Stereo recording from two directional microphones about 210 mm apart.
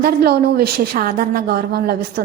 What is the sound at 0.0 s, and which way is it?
A woman's voice, 50° right (ahead or behind).